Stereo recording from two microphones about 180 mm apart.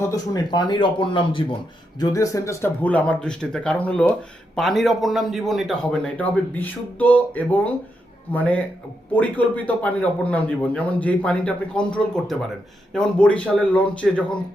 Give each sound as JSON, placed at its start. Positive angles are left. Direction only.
{"t": 0.1, "sound": "speech", "side_deg": 25}
{"t": 2.0, "sound": "a man's voice", "side_deg": 20}
{"t": 12.9, "sound": "a man's voice", "side_deg": 5}